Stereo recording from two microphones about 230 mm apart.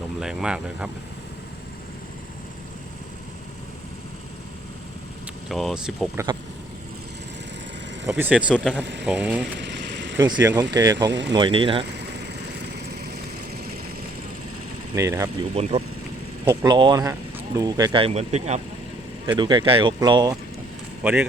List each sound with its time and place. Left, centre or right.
0.2 s speech: centre
5.5 s speech: centre
8.0 s speech: centre
8.8 s speech: right
9.0 s speech: centre
9.6 s vehicle: right
10.2 s speech: centre
11.1 s speech: right
11.3 s speech: right
11.9 s vehicle: right
14.9 s speech: centre
15.5 s speech: right
19.4 s speech: centre
21.0 s speech: centre